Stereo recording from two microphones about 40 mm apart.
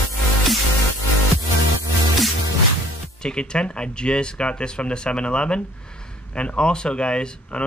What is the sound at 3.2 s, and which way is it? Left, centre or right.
Speech, left.